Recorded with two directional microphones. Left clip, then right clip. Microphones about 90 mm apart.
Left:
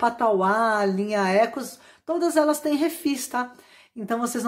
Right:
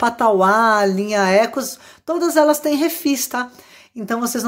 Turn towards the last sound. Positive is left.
turn(degrees=-20)  # may be behind; listen again after turning